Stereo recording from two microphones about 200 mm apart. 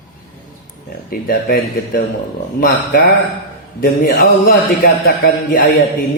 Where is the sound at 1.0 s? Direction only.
45° left (ahead or behind).